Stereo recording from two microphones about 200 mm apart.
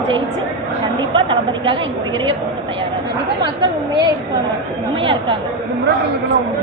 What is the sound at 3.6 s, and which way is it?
Speech, 20° right (ahead or behind).